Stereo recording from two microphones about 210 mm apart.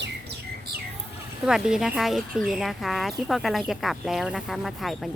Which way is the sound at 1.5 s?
5° right (ahead or behind).